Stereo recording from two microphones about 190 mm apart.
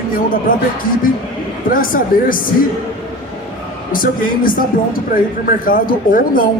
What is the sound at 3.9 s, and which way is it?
A man's voice, 50° left (ahead or behind).